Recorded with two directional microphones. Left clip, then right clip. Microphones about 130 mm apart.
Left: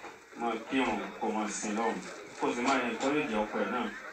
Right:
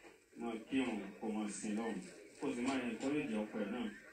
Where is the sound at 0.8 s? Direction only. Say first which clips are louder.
Left 9 dB; 55° right (ahead or behind).